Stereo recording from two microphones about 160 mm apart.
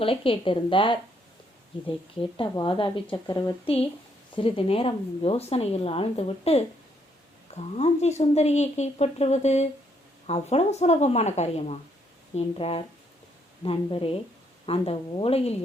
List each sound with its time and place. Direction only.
0.0 s speech: 35° left (ahead or behind)
2.4 s speech: 30° left (ahead or behind)
4.4 s speech: 35° left (ahead or behind)